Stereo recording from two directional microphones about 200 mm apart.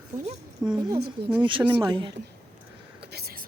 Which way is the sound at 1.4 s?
25° right (ahead or behind).